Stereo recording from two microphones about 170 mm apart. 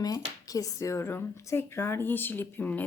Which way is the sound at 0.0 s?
20° left (ahead or behind).